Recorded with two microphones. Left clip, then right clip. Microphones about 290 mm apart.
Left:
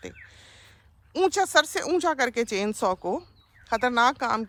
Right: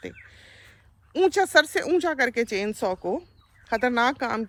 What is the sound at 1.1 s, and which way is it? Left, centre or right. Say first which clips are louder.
Speech: right 2 dB; centre.